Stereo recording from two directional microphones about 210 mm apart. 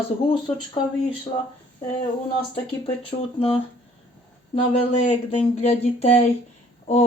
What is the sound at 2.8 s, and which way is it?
Speech, 30° left (ahead or behind).